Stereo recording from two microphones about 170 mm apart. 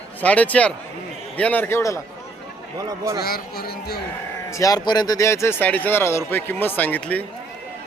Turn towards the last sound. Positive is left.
turn(degrees=10)  # may be behind; listen again after turning